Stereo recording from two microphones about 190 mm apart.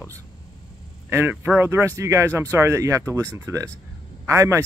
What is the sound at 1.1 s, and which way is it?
Speech, 10° right (ahead or behind).